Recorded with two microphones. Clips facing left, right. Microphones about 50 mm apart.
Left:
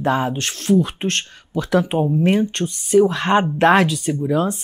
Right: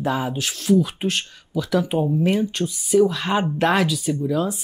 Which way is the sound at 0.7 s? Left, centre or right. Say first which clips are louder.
Left 1 dB; centre.